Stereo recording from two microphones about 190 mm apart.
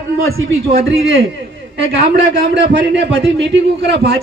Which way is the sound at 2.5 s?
65° right (ahead or behind).